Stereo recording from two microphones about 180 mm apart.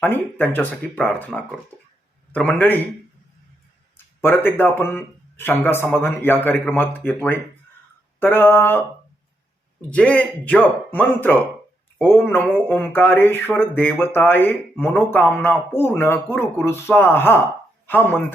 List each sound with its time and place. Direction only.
0.0 s speech: 10° left (ahead or behind)
3.9 s speech: 10° left (ahead or behind)
9.9 s speech: 5° left (ahead or behind)